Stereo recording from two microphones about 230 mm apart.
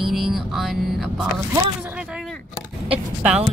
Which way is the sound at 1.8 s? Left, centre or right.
Centre.